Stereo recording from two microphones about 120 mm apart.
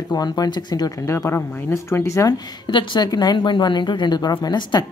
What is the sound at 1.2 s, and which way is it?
Speech, 20° left (ahead or behind).